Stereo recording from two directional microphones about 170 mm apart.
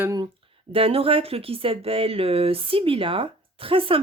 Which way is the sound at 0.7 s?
35° right (ahead or behind).